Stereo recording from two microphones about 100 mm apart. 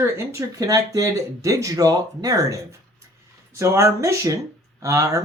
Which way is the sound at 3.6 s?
30° right (ahead or behind).